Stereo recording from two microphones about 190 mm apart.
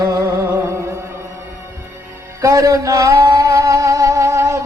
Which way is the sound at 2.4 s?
15° right (ahead or behind).